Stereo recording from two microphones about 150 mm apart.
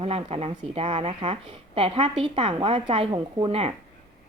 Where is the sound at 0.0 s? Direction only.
40° right (ahead or behind).